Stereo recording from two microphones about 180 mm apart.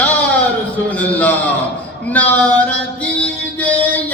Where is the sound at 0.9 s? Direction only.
10° left (ahead or behind).